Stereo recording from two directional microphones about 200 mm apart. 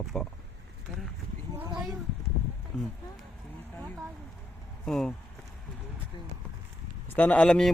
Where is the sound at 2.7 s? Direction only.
Centre (ahead or behind).